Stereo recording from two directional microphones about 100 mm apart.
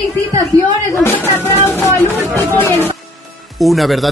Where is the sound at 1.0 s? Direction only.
25° left (ahead or behind).